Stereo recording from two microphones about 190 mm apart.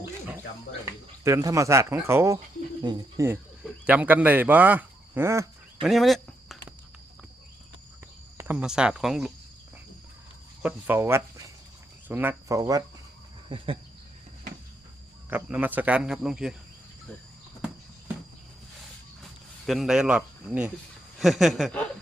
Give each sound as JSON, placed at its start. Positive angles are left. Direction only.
{"t": 0.0, "sound": "cricket", "side_deg": -10}
{"t": 1.2, "sound": "speech", "side_deg": -15}
{"t": 3.6, "sound": "speech", "side_deg": -5}
{"t": 5.8, "sound": "a sound", "side_deg": 0}
{"t": 8.4, "sound": "speech", "side_deg": -10}
{"t": 10.6, "sound": "speech", "side_deg": -10}
{"t": 15.3, "sound": "speech", "side_deg": -10}
{"t": 19.6, "sound": "speech", "side_deg": 0}